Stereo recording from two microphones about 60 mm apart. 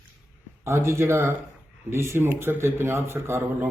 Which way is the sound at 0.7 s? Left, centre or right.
Right.